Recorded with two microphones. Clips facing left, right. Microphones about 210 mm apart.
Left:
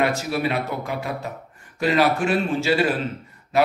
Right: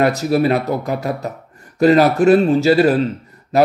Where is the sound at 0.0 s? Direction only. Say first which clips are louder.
Right 7 dB; 40° right (ahead or behind).